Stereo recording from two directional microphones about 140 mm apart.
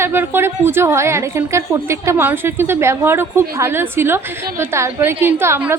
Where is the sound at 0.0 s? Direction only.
15° right (ahead or behind).